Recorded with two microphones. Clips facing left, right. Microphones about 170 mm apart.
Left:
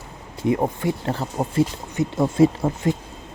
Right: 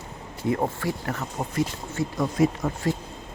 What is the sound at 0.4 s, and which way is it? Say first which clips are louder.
Speech: left 4 dB; 20° left (ahead or behind).